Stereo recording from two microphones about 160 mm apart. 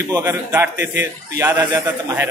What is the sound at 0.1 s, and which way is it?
A man's voice, 15° right (ahead or behind).